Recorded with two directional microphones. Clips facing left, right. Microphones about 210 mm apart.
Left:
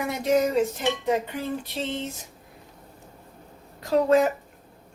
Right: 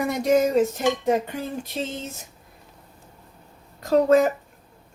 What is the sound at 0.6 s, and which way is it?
Speech, 45° right (ahead or behind).